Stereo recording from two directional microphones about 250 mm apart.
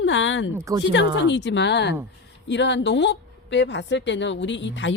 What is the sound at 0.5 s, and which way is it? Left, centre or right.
Speech, centre.